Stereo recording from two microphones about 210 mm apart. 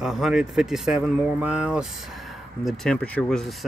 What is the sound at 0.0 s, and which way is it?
Speech, centre (ahead or behind).